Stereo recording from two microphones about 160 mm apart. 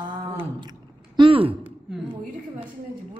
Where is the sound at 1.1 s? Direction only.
35° right (ahead or behind).